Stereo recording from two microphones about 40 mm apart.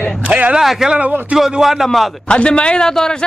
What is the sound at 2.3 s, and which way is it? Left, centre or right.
Speech, left.